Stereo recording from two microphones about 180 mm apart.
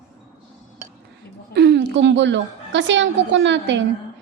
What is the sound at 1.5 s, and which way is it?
A woman's voice, 75° right (ahead or behind).